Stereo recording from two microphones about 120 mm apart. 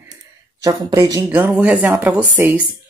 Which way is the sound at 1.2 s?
10° right (ahead or behind).